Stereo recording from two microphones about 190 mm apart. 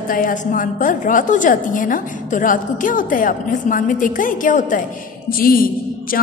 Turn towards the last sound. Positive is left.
turn(degrees=50)  # may be behind; listen again after turning